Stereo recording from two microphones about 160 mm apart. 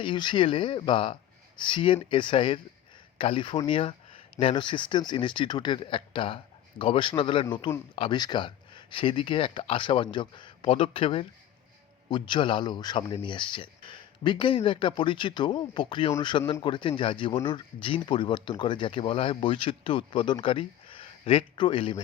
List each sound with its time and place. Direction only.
0.0 s speech: 30° left (ahead or behind)